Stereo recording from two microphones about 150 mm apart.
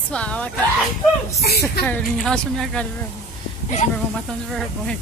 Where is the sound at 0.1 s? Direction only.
10° left (ahead or behind).